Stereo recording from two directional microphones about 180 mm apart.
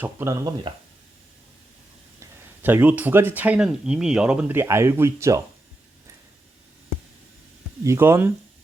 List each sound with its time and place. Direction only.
0.0 s speech: 15° right (ahead or behind)
2.6 s speech: 10° right (ahead or behind)
7.9 s speech: 15° right (ahead or behind)